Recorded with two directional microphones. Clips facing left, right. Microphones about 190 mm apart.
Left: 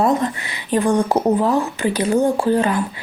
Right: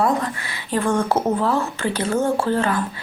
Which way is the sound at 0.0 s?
20° left (ahead or behind).